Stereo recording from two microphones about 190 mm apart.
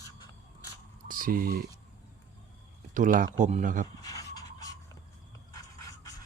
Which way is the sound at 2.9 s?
45° right (ahead or behind).